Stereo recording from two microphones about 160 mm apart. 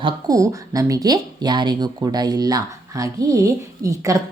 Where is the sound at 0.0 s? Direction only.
20° right (ahead or behind).